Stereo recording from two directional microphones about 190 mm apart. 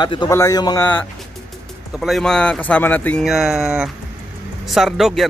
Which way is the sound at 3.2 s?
Centre (ahead or behind).